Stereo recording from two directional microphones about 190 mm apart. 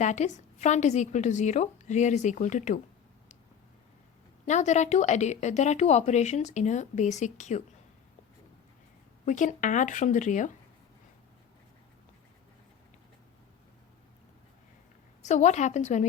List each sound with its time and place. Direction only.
0.0 s a woman's voice: 40° left (ahead or behind)
4.4 s a woman's voice: 40° left (ahead or behind)
9.2 s a woman's voice: 40° left (ahead or behind)
15.2 s a woman's voice: 40° left (ahead or behind)